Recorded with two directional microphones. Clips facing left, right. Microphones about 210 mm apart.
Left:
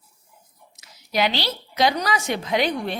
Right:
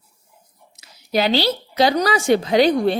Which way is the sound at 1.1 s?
30° right (ahead or behind).